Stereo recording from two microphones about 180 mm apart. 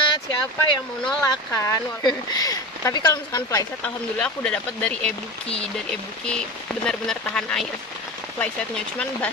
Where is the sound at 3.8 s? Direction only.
5° left (ahead or behind).